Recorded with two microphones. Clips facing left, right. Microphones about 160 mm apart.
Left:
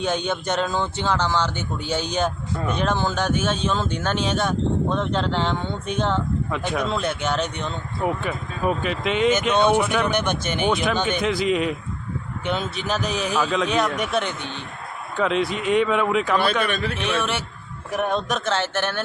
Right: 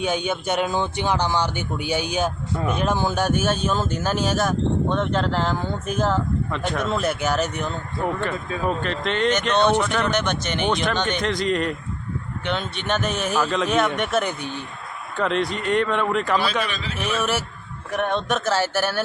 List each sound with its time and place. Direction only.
0.0 s speech: 10° right (ahead or behind)
8.0 s speech: 10° left (ahead or behind)
16.6 s a man's voice: 55° left (ahead or behind)
17.2 s speech: 5° right (ahead or behind)